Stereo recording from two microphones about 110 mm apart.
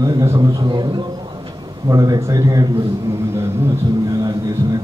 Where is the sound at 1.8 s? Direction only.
35° right (ahead or behind).